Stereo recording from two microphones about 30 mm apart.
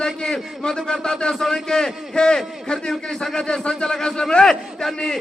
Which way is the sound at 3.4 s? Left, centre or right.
Left.